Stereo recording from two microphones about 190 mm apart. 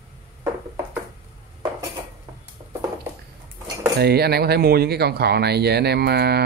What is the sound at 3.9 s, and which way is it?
Speech, 55° right (ahead or behind).